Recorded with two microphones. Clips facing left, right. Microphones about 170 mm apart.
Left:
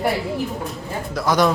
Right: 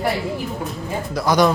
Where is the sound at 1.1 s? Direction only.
Centre (ahead or behind).